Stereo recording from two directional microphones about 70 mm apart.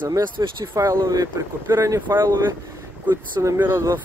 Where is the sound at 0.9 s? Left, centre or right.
Right.